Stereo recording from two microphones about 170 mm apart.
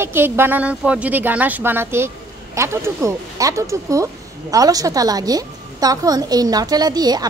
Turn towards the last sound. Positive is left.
turn(degrees=-25)  # may be behind; listen again after turning